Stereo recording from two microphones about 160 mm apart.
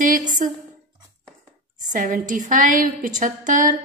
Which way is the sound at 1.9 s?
55° right (ahead or behind).